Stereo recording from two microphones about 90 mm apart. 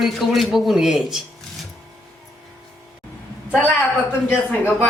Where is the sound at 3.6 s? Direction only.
25° left (ahead or behind).